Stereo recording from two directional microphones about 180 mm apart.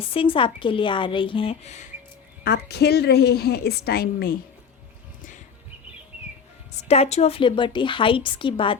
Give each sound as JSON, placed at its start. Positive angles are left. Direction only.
{"t": 0.0, "sound": "speech", "side_deg": 30}
{"t": 2.4, "sound": "a woman's voice", "side_deg": 65}
{"t": 6.8, "sound": "speech", "side_deg": 35}